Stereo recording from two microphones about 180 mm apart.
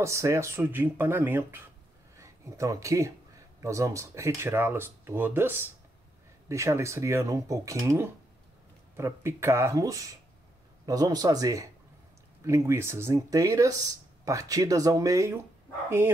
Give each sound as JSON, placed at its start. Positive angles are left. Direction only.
{"t": 0.0, "sound": "speech", "side_deg": -15}